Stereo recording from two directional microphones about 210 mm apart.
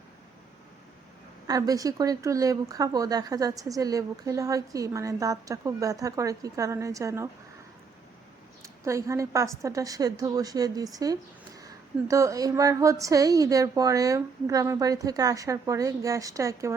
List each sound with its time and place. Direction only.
1.5 s speech: 15° right (ahead or behind)
8.6 s speech: 15° right (ahead or behind)